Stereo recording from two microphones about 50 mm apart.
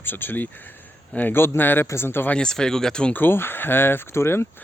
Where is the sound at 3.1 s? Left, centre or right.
Left.